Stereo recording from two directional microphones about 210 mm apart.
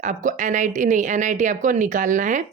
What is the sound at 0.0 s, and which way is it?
Speech, 35° right (ahead or behind).